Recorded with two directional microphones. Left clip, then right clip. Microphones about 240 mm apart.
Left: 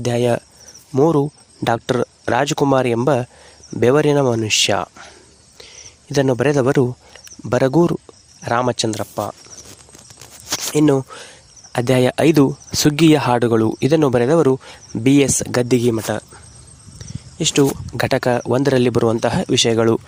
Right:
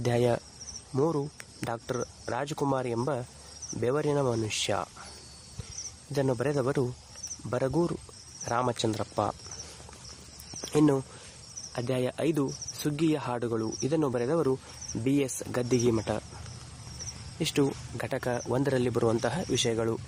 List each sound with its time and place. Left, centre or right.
0.0 s speech: left
6.1 s speech: left
10.7 s speech: left
17.3 s speech: left